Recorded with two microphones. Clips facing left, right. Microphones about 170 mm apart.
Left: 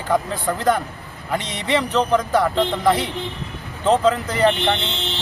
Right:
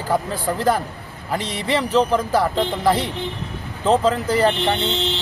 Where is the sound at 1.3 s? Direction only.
Centre (ahead or behind).